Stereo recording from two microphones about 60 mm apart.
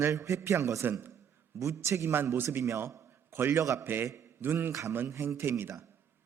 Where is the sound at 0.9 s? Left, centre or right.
Right.